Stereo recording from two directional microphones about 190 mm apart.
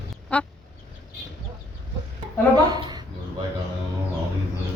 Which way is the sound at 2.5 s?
20° right (ahead or behind).